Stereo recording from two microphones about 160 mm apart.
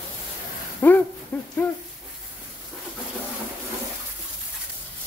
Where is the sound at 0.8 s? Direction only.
15° left (ahead or behind).